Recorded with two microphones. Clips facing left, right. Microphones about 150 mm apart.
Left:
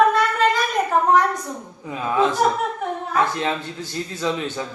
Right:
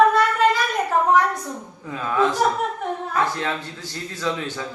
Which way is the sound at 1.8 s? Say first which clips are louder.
Left 1 dB; 15° left (ahead or behind).